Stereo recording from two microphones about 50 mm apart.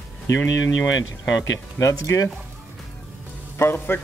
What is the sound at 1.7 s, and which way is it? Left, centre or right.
Speech, left.